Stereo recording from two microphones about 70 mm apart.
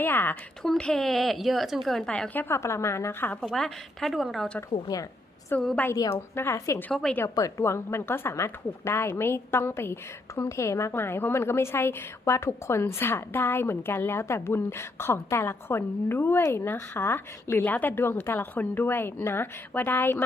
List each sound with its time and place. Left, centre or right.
0.0 s speech: left
0.8 s speech: centre
2.0 s a woman's voice: centre
2.3 s speech: left
2.6 s a woman's voice: left
3.4 s speech: centre
5.5 s a woman's voice: left
5.9 s a woman's voice: left
7.0 s speech: centre
7.6 s a woman's voice: left
17.7 s a woman's voice: left